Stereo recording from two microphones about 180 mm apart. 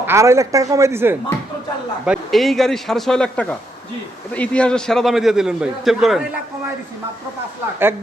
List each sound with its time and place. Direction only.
0.0 s speech: 15° right (ahead or behind)
2.0 s a man's voice: centre (ahead or behind)